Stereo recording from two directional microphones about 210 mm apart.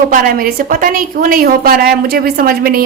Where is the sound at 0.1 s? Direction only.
45° right (ahead or behind).